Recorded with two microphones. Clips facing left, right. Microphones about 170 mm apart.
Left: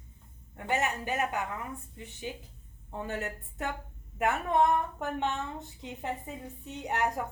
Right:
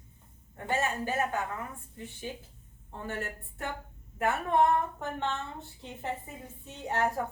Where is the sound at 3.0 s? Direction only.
20° left (ahead or behind).